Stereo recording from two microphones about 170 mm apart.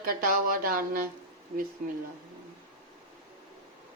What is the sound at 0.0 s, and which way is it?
A woman's voice, 55° right (ahead or behind).